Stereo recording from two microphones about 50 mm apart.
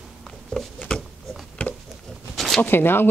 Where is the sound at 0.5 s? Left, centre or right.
Centre.